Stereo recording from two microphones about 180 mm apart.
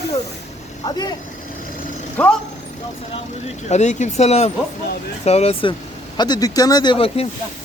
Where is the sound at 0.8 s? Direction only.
25° left (ahead or behind).